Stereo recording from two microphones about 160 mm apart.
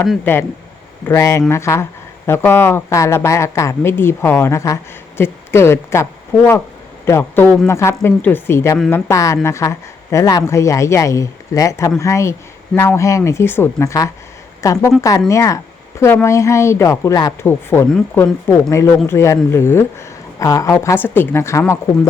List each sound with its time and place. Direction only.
0.3 s speech: 15° left (ahead or behind)